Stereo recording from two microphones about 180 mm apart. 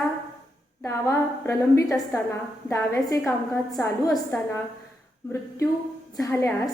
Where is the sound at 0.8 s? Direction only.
15° left (ahead or behind).